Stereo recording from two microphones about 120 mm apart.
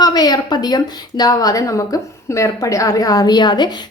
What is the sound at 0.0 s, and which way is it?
Speech, 35° left (ahead or behind).